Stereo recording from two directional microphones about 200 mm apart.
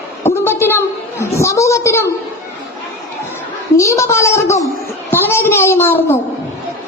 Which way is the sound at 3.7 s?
15° left (ahead or behind).